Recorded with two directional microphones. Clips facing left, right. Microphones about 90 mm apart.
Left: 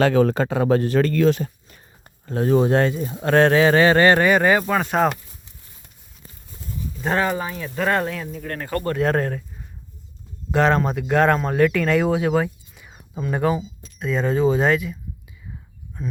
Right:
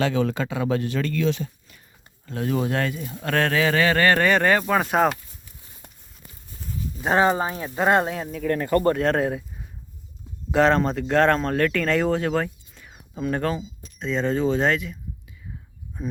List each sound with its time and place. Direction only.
0.0 s speech: 45° left (ahead or behind); by 4.2 s 20° left (ahead or behind)
4.2 s speech: 10° left (ahead or behind)
7.0 s speech: 15° right (ahead or behind)
7.3 s speech: 30° right (ahead or behind)
9.0 s speech: centre (ahead or behind)
13.4 s speech: 15° left (ahead or behind)
16.0 s speech: 10° right (ahead or behind)